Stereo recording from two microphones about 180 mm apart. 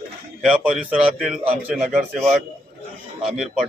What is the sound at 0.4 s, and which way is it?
Speech, 5° right (ahead or behind).